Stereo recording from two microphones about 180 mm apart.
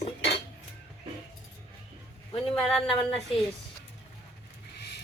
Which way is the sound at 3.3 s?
30° left (ahead or behind).